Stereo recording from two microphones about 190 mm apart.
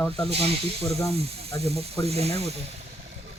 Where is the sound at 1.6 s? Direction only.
30° right (ahead or behind).